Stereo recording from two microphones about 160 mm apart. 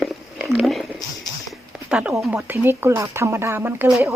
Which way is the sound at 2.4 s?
15° right (ahead or behind).